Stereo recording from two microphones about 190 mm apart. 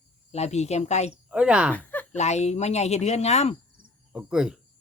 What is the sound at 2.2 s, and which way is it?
Speech, 35° left (ahead or behind).